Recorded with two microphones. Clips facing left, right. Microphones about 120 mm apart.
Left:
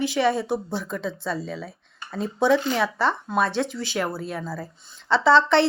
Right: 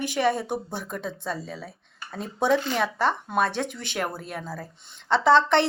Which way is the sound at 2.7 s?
45° right (ahead or behind).